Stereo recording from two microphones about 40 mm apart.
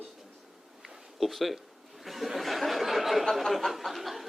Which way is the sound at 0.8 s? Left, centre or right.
Centre.